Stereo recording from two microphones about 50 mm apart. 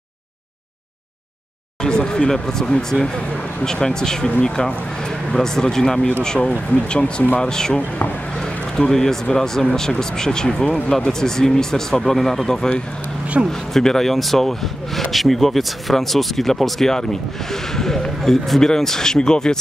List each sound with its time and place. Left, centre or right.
1.8 s a man's voice: centre